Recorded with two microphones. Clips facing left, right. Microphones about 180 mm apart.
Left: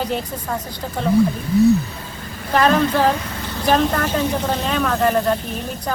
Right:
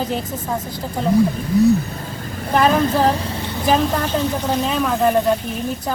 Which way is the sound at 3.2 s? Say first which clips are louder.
Right 2 dB; 25° right (ahead or behind).